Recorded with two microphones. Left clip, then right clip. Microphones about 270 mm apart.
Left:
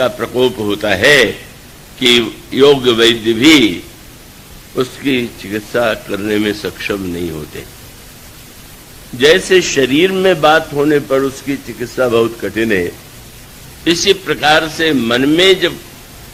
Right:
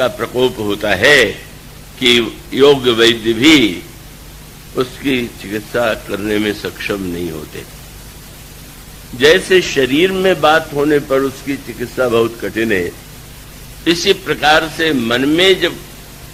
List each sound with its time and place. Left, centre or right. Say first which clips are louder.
0.0 s a man's voice: left 1 dB; right
9.1 s a man's voice: left 1 dB; right